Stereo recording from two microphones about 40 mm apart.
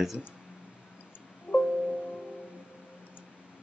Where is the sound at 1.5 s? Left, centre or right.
Right.